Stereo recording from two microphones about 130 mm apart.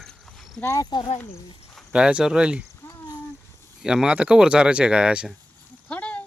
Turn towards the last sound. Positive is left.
turn(degrees=10)  # may be behind; listen again after turning